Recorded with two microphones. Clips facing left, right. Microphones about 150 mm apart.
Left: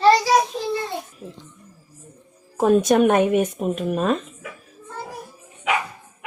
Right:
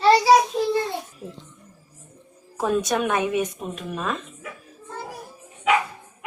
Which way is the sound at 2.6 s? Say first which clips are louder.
Left 7 dB; 50° left (ahead or behind).